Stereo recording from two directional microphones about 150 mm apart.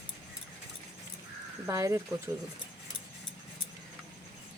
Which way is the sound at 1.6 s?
20° right (ahead or behind).